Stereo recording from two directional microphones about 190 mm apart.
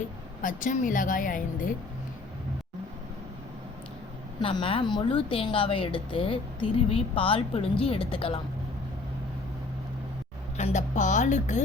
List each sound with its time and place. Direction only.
0.4 s a woman's voice: 45° left (ahead or behind)
4.4 s a woman's voice: 30° left (ahead or behind)
10.6 s speech: 40° left (ahead or behind)